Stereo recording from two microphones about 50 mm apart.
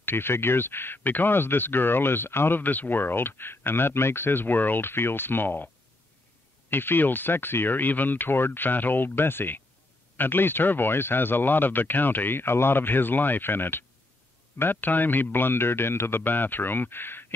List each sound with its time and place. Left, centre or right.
0.0 s speech: left
6.7 s speech: left